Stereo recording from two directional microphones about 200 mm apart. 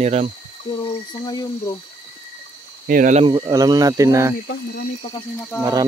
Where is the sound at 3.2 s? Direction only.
20° right (ahead or behind).